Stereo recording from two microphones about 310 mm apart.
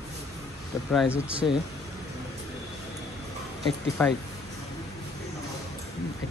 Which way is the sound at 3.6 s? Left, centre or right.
Centre.